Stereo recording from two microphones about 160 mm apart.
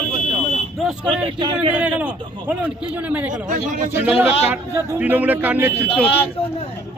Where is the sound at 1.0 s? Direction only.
30° right (ahead or behind).